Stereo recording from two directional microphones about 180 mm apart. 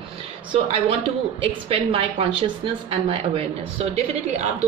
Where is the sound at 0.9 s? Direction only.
30° right (ahead or behind).